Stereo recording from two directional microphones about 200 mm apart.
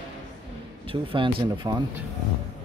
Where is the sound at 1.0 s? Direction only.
25° right (ahead or behind).